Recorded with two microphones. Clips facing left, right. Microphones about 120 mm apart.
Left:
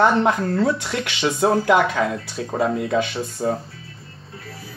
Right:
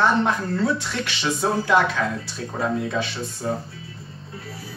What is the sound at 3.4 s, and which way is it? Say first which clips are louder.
Speech: left 4 dB; 40° left (ahead or behind).